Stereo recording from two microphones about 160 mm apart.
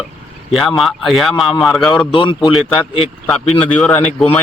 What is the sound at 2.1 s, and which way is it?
Speech, 30° left (ahead or behind).